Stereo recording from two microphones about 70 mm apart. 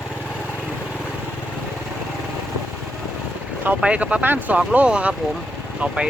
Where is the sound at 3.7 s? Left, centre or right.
Centre.